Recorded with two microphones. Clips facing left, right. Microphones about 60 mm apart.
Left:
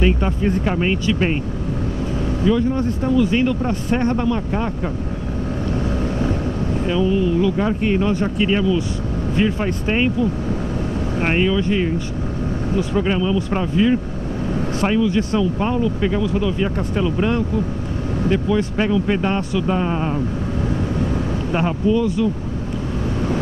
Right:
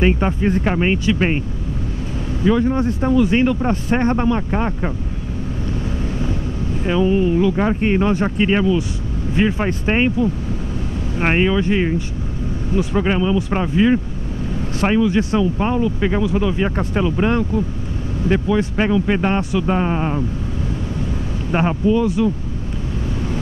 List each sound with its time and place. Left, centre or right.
0.0 s speech: right
2.4 s speech: right
6.9 s speech: right
11.1 s speech: right
12.9 s speech: right
18.6 s speech: centre
21.5 s speech: right